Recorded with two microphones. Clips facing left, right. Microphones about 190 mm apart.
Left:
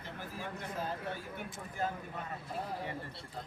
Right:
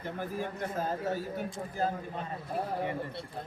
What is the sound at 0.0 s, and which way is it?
Speech, 50° right (ahead or behind).